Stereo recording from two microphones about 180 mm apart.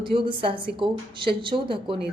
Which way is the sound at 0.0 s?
30° right (ahead or behind).